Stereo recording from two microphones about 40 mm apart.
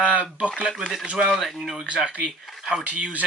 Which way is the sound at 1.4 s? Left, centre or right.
Centre.